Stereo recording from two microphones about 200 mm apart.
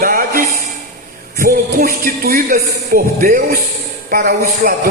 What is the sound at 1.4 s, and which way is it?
Speech, 45° right (ahead or behind).